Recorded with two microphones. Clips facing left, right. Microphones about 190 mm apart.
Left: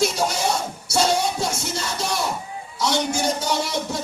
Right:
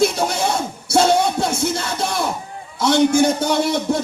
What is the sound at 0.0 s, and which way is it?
Music, 55° right (ahead or behind).